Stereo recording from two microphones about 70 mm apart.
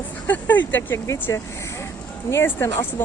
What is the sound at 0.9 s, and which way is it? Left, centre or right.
Speech, left.